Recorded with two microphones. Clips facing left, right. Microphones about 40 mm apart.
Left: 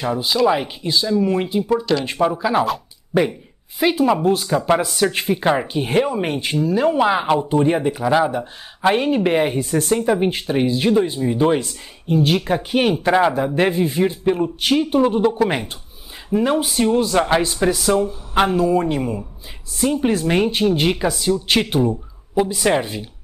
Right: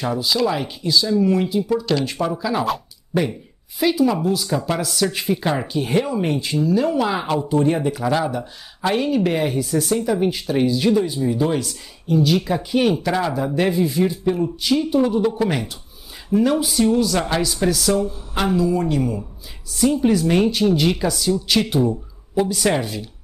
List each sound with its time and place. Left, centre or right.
0.5 s speech: left
3.9 s speech: left
9.7 s speech: left; by 16.5 s centre
16.5 s speech: left
22.4 s speech: centre